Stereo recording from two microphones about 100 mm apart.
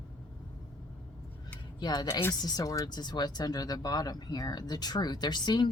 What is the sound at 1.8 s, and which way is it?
Speech, 45° left (ahead or behind).